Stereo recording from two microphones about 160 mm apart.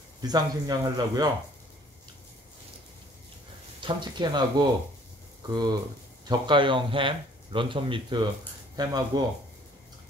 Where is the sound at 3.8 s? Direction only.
30° right (ahead or behind).